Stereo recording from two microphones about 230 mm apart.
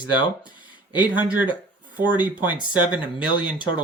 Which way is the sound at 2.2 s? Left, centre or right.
Centre.